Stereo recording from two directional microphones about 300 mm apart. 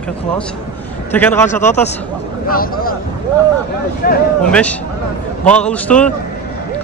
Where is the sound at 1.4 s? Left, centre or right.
Left.